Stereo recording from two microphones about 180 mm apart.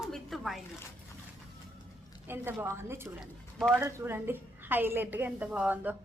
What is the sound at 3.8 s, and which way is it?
A woman's voice, 15° right (ahead or behind).